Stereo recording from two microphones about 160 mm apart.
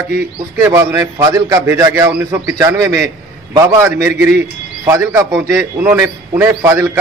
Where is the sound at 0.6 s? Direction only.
20° right (ahead or behind).